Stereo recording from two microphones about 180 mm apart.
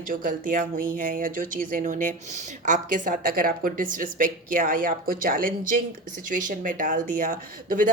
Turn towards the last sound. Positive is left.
turn(degrees=-50)  # may be behind; listen again after turning